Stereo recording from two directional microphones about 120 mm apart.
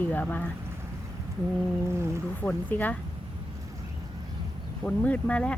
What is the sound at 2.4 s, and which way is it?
Speech, 15° left (ahead or behind).